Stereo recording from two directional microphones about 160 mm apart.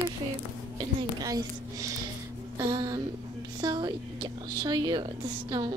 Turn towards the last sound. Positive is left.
turn(degrees=-25)  # may be behind; listen again after turning